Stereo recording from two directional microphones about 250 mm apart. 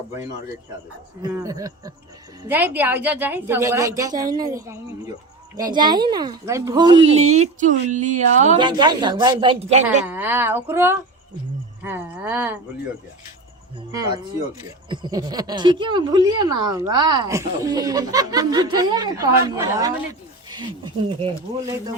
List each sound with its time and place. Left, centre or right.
1.2 s speech: centre; by 8.5 s right
8.5 s speech: centre
10.1 s speech: centre
14.8 s speech: centre